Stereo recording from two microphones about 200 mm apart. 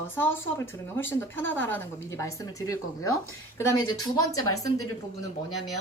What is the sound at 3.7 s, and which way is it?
Speech, 15° left (ahead or behind).